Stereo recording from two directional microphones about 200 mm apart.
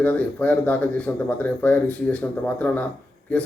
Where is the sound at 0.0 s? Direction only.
5° left (ahead or behind).